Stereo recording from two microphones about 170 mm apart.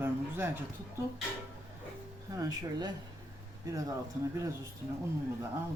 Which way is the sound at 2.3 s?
20° right (ahead or behind).